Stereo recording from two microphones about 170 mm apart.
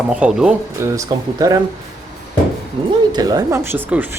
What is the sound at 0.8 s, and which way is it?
Speech, 20° right (ahead or behind).